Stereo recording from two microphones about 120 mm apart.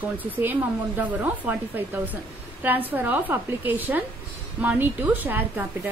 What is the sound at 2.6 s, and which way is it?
Speech, 15° right (ahead or behind).